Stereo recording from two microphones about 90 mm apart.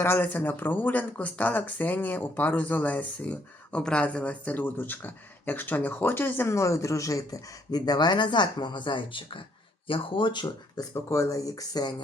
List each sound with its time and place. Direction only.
0.0 s speech: 20° left (ahead or behind); by 10.4 s 65° left (ahead or behind)
10.9 s speech: 35° left (ahead or behind)